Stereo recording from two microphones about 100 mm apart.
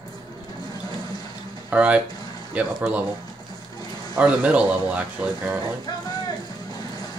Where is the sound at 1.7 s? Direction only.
15° right (ahead or behind).